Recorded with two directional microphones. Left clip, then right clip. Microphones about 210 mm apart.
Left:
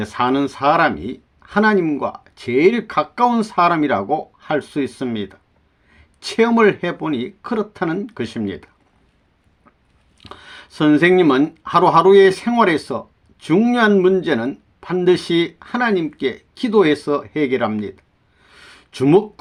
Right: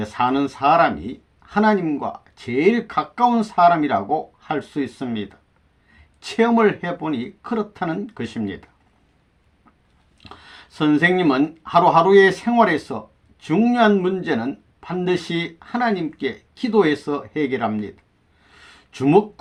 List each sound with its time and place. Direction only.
0.0 s speech: 30° left (ahead or behind)
10.2 s speech: 35° left (ahead or behind)
18.5 s a sound: 35° left (ahead or behind)